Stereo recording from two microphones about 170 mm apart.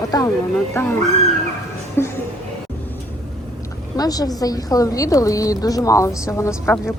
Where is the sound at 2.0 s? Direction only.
15° left (ahead or behind).